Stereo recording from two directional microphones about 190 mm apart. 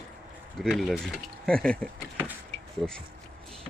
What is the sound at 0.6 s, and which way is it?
Speech, centre (ahead or behind).